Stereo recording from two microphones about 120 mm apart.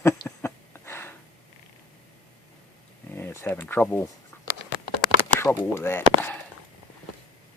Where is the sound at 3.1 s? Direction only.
20° left (ahead or behind).